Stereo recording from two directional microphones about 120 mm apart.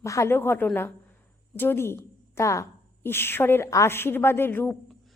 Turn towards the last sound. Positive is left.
turn(degrees=15)  # may be behind; listen again after turning